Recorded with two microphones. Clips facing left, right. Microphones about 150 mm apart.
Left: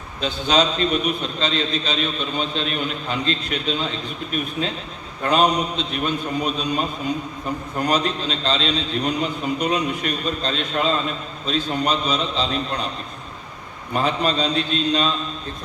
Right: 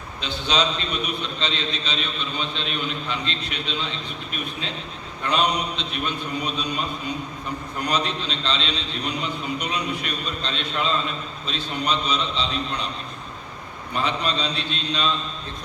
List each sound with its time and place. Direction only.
0.2 s a man's voice: 45° left (ahead or behind)
5.2 s a man's voice: 45° left (ahead or behind)
13.9 s a man's voice: 45° left (ahead or behind)